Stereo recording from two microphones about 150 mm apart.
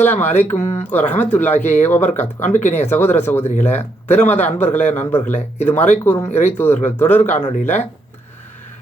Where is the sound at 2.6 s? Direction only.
50° left (ahead or behind).